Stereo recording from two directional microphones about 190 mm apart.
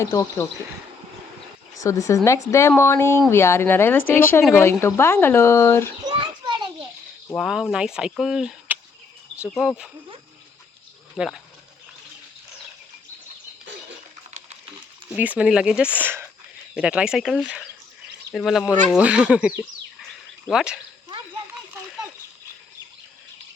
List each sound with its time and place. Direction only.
0.0 s speech: 15° left (ahead or behind)
1.7 s speech: 15° left (ahead or behind)
6.1 s children playing: 25° right (ahead or behind)
7.3 s speech: centre (ahead or behind)
11.2 s speech: 5° right (ahead or behind)
14.3 s typing: 40° right (ahead or behind)
15.1 s speech: 5° right (ahead or behind)